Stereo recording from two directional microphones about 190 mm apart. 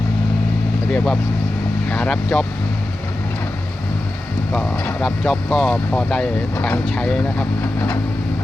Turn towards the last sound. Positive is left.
turn(degrees=10)  # may be behind; listen again after turning